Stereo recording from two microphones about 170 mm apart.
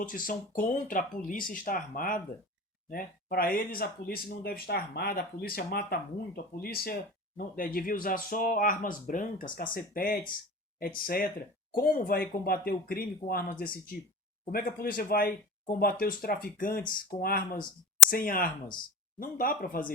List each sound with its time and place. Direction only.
0.0 s speech: 55° left (ahead or behind)